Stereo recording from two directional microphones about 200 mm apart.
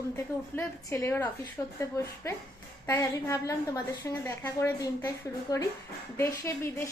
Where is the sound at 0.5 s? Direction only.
10° left (ahead or behind).